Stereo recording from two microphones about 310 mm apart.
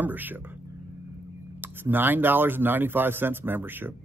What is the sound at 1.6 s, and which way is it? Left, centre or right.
A man's voice, centre.